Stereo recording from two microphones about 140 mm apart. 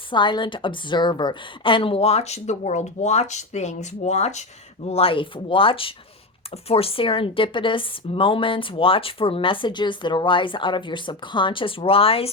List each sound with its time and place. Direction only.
0.1 s a woman's voice: 35° left (ahead or behind); by 4.4 s 55° left (ahead or behind)
4.9 s speech: 45° left (ahead or behind)